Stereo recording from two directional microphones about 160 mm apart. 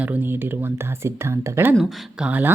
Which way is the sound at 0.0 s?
10° right (ahead or behind).